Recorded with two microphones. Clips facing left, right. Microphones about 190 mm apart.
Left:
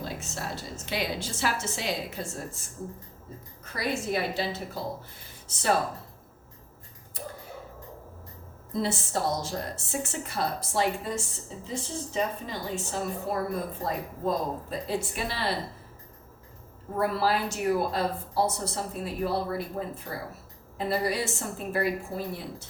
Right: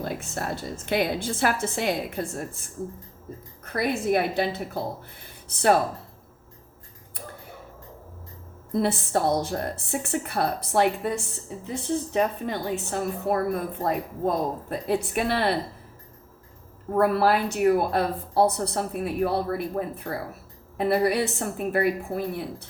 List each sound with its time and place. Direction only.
0.0 s a woman's voice: 55° right (ahead or behind)
3.6 s a woman's voice: 55° right (ahead or behind)
8.7 s a woman's voice: 60° right (ahead or behind)
16.9 s a woman's voice: 55° right (ahead or behind)